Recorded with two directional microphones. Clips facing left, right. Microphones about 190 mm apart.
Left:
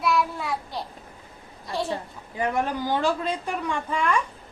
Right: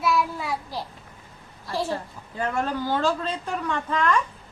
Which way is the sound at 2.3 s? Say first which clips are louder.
Left 1 dB; 15° left (ahead or behind).